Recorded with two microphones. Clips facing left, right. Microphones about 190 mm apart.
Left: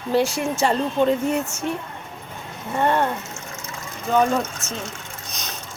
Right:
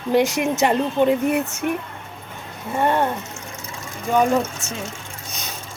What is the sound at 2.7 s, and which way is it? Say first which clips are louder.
Speech: right 1 dB; 15° right (ahead or behind).